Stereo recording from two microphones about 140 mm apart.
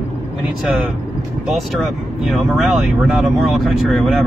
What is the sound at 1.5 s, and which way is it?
Speech, centre (ahead or behind).